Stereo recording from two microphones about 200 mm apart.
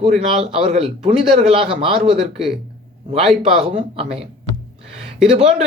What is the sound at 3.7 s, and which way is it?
Speech, 35° right (ahead or behind).